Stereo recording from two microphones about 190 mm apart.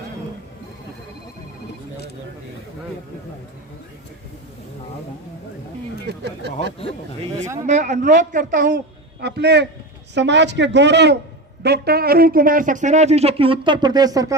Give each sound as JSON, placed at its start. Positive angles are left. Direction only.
{"t": 6.1, "sound": "a sound", "side_deg": -65}
{"t": 7.7, "sound": "a man's voice", "side_deg": -40}
{"t": 9.2, "sound": "a man's voice", "side_deg": -60}